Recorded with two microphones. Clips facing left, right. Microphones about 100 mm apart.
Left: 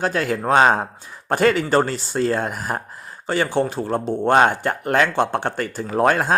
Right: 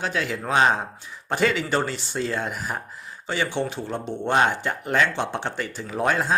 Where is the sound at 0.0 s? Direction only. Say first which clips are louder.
Left 6 dB; 45° left (ahead or behind).